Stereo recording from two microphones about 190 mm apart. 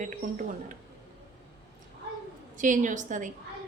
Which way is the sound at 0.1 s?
45° right (ahead or behind).